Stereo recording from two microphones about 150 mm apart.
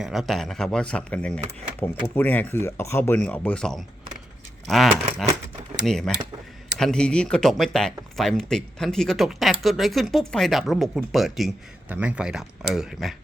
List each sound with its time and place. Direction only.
0.0 s speech: centre (ahead or behind)